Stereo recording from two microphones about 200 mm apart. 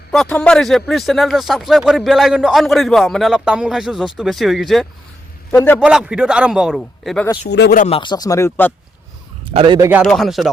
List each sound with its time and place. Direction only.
0.1 s speech: 5° left (ahead or behind)
5.5 s a man's voice: 10° left (ahead or behind)
5.8 s speech: 5° right (ahead or behind)
7.5 s speech: 60° left (ahead or behind)
7.8 s speech: 30° left (ahead or behind); by 8.7 s 10° left (ahead or behind)
9.5 s a man's voice: 25° right (ahead or behind)
10.0 s speech: centre (ahead or behind)